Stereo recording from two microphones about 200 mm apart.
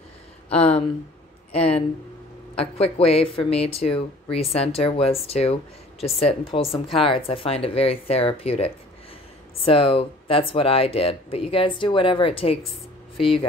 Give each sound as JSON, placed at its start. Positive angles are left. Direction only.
{"t": 0.5, "sound": "speech", "side_deg": 30}